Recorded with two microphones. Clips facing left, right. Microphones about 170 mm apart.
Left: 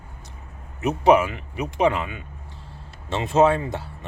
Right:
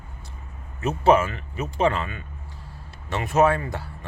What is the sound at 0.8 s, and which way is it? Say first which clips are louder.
Speech: left 1 dB; 15° left (ahead or behind).